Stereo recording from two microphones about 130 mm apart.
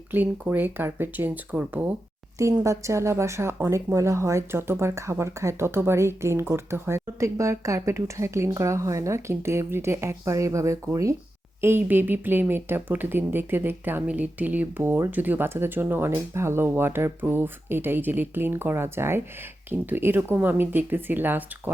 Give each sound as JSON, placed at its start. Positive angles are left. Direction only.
{"t": 0.1, "sound": "a woman's voice", "side_deg": -15}